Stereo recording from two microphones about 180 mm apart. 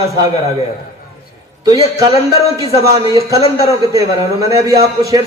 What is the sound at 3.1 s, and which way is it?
A man's voice, 25° right (ahead or behind).